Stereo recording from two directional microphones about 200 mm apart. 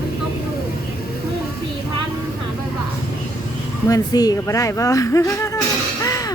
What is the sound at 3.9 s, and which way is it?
Speech, 20° left (ahead or behind).